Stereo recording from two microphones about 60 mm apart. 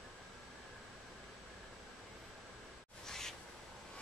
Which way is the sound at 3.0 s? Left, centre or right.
Centre.